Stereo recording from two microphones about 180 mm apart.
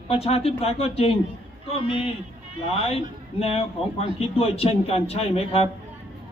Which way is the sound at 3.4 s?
35° left (ahead or behind).